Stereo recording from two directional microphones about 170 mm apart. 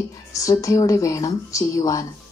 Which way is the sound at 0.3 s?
20° left (ahead or behind).